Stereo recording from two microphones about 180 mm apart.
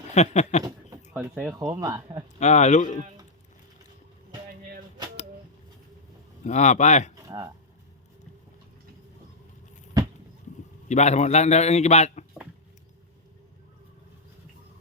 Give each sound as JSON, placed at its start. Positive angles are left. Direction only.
{"t": 0.1, "sound": "a man's voice", "side_deg": 40}
{"t": 1.1, "sound": "speech", "side_deg": -10}
{"t": 1.5, "sound": "speech", "side_deg": -20}
{"t": 2.4, "sound": "a man's voice", "side_deg": 40}
{"t": 6.4, "sound": "a man's voice", "side_deg": 40}
{"t": 7.3, "sound": "speech", "side_deg": -15}
{"t": 10.8, "sound": "a man's voice", "side_deg": 40}